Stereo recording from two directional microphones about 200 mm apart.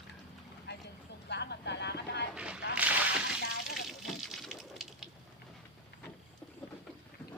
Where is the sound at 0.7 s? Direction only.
60° left (ahead or behind).